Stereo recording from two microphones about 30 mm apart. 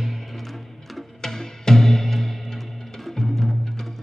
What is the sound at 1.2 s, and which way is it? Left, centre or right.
Music, centre.